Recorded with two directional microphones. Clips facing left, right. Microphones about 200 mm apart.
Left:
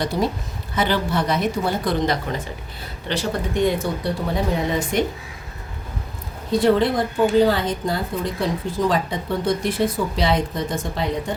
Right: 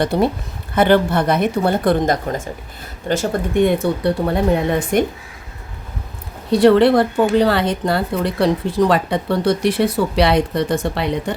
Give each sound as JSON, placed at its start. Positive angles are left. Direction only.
{"t": 0.0, "sound": "speech", "side_deg": -60}
{"t": 6.5, "sound": "speech", "side_deg": -70}